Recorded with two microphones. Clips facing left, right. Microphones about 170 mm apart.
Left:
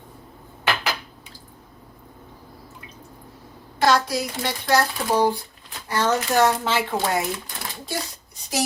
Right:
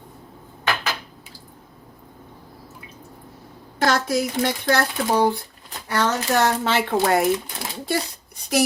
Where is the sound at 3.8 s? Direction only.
50° right (ahead or behind).